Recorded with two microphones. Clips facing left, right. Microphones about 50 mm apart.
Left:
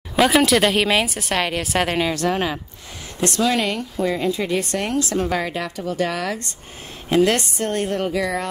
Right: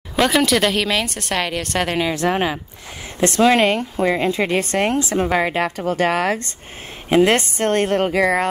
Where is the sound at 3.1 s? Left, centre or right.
Right.